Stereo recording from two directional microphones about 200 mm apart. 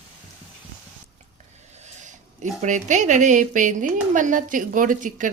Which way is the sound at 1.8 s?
35° right (ahead or behind).